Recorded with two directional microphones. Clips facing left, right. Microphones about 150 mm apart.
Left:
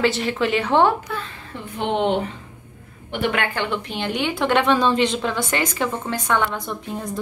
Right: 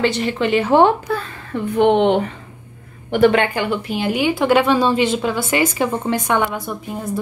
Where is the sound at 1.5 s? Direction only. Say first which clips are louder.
Right 10 dB; 60° right (ahead or behind).